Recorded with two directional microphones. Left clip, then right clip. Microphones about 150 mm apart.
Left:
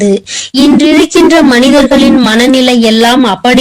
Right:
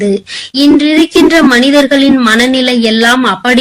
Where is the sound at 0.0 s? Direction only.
25° left (ahead or behind).